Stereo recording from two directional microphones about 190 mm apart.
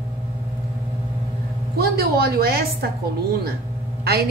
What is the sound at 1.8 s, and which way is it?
A woman's voice, 55° right (ahead or behind).